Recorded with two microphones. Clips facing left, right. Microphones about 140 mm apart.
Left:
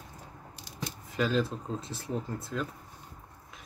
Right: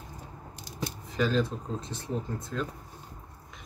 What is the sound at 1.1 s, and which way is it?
Speech, 5° left (ahead or behind).